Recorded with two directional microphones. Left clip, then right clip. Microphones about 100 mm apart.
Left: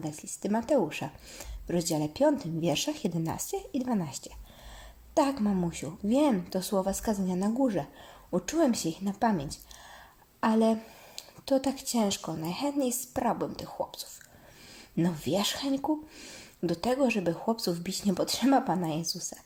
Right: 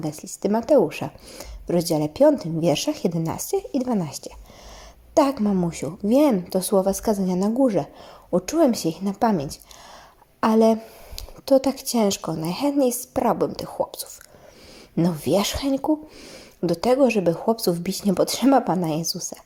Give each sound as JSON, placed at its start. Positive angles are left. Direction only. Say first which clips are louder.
{"t": 0.0, "sound": "a woman's voice", "louder": "right 9 dB", "side_deg": -35}
{"t": 16.6, "sound": "speech", "louder": "right 9 dB", "side_deg": -40}